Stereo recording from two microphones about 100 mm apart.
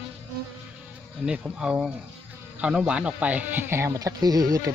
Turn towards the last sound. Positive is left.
turn(degrees=-35)  # may be behind; listen again after turning